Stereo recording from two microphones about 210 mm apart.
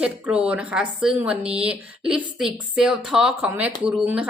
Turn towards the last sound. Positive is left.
turn(degrees=-5)  # may be behind; listen again after turning